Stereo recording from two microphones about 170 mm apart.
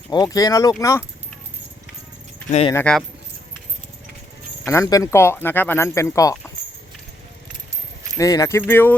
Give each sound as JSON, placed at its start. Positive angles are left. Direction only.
{"t": 0.1, "sound": "speech", "side_deg": 20}
{"t": 2.5, "sound": "speech", "side_deg": 40}
{"t": 2.7, "sound": "speech", "side_deg": 5}
{"t": 4.6, "sound": "speech", "side_deg": 15}
{"t": 8.2, "sound": "speech", "side_deg": 20}